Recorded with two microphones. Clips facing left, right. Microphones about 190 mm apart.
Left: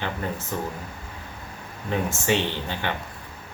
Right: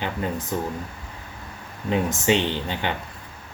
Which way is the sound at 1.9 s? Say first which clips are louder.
Right 3 dB; 15° right (ahead or behind).